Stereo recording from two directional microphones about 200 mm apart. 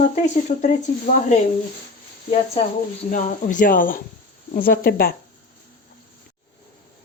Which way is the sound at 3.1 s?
40° left (ahead or behind).